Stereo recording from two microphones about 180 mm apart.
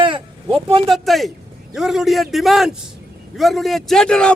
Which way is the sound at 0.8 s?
Centre (ahead or behind).